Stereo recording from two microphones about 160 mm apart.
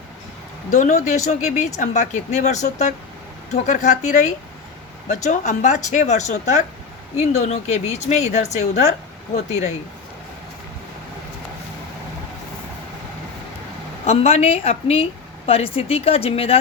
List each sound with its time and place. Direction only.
0.7 s speech: 50° left (ahead or behind)
14.1 s speech: 40° left (ahead or behind)